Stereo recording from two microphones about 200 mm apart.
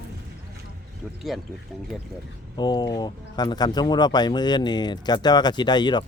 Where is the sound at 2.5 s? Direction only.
20° left (ahead or behind).